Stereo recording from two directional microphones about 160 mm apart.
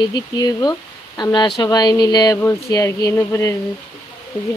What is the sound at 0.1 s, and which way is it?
Speech, 25° left (ahead or behind).